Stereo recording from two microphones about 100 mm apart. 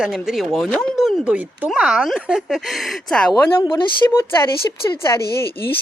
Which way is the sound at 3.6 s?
55° left (ahead or behind).